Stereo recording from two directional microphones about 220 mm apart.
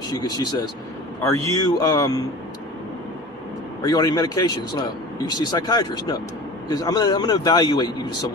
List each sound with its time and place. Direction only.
0.1 s a man's voice: 20° left (ahead or behind)
3.8 s a man's voice: 20° left (ahead or behind)